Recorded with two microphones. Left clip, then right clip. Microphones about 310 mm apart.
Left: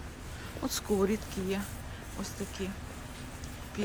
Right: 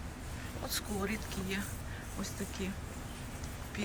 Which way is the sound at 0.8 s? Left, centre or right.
Centre.